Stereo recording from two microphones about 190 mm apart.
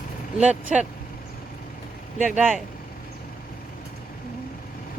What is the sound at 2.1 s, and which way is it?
Speech, 40° right (ahead or behind).